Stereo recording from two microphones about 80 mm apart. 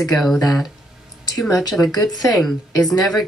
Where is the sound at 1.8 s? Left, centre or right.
Left.